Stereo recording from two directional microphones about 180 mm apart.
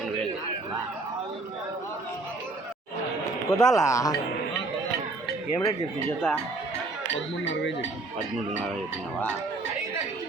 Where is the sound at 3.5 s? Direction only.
20° left (ahead or behind).